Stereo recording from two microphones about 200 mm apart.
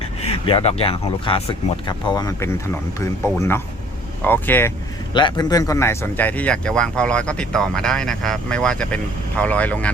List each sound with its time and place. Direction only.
0.2 s speech: 30° left (ahead or behind); by 4.7 s 10° left (ahead or behind)
5.1 s speech: 20° left (ahead or behind)